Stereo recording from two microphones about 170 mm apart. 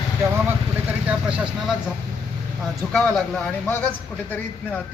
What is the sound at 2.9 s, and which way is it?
A man's voice, 5° left (ahead or behind).